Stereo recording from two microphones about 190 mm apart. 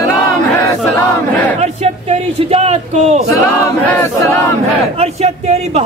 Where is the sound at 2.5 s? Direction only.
35° right (ahead or behind).